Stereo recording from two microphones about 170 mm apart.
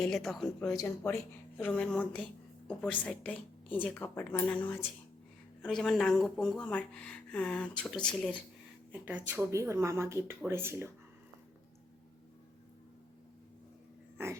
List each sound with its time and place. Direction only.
0.0 s a woman's voice: 5° left (ahead or behind)
0.7 s a woman's voice: 20° left (ahead or behind)
8.9 s speech: 10° right (ahead or behind)
14.2 s speech: 15° right (ahead or behind)